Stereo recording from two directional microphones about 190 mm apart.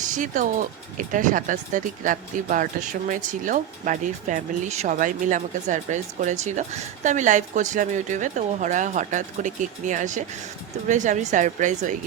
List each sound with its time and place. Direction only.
0.1 s speech: 40° right (ahead or behind)